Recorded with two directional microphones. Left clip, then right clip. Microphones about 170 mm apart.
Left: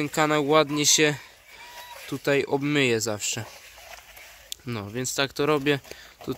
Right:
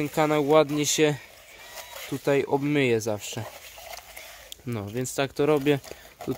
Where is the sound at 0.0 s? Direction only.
Centre (ahead or behind).